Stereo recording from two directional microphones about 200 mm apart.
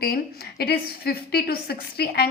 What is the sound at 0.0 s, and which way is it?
A woman's voice, 50° left (ahead or behind).